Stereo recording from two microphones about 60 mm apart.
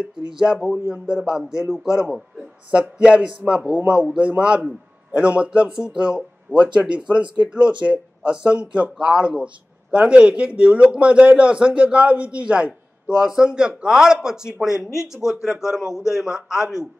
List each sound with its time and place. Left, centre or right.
0.3 s a man's voice: centre